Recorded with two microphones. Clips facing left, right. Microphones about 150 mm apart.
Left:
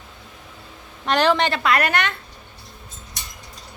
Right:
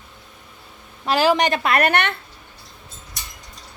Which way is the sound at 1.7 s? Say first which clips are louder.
Right 2 dB; 60° right (ahead or behind).